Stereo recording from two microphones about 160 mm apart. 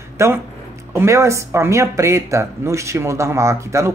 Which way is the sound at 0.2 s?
20° right (ahead or behind).